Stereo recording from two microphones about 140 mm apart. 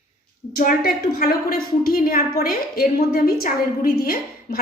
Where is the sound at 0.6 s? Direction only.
90° left.